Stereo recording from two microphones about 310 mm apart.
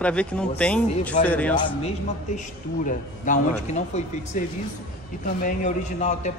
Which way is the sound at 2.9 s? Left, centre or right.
Left.